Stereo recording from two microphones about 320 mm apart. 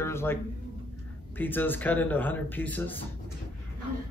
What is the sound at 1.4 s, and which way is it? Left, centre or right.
Speech, centre.